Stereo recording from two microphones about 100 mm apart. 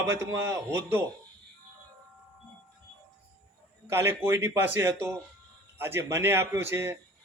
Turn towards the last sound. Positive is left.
turn(degrees=-25)  # may be behind; listen again after turning